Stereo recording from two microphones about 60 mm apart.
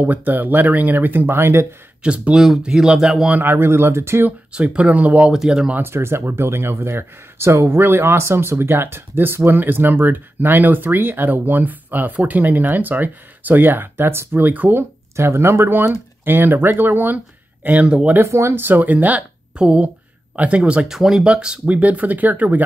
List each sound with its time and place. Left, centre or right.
0.0 s speech: right
2.0 s speech: right
2.3 s speech: centre
2.6 s speech: centre
3.3 s speech: right
4.6 s speech: right
5.3 s speech: centre
5.8 s speech: right
14.8 s speech: right
17.6 s speech: right
18.1 s speech: right
20.9 s speech: centre; by 22.7 s right